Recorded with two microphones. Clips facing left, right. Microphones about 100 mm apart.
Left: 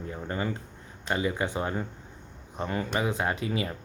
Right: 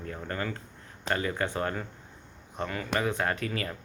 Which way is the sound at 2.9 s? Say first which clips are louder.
Right 2 dB; 15° left (ahead or behind).